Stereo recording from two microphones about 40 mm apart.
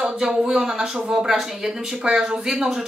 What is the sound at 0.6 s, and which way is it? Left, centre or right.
Speech, centre.